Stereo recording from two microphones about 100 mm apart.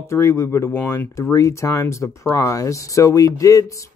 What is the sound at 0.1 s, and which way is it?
Speech, 30° left (ahead or behind).